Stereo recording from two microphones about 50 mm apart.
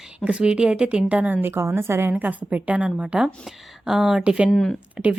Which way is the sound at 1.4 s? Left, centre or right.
Right.